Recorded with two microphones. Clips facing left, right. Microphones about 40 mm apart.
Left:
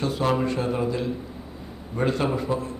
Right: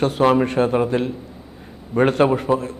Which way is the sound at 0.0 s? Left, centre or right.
Right.